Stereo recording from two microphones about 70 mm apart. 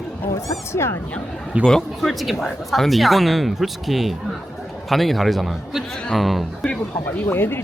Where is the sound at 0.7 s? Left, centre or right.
Left.